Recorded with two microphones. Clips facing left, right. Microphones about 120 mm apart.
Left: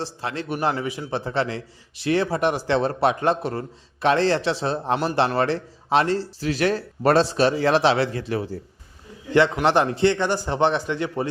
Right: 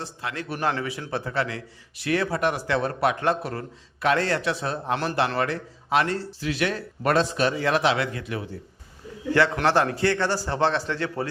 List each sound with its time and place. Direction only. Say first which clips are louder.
0.0 s a man's voice: left 4 dB; 30° left (ahead or behind)
9.3 s a man's voice: left 3 dB; 20° left (ahead or behind)